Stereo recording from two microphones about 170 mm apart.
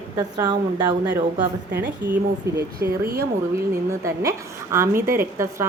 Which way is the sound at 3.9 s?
20° right (ahead or behind).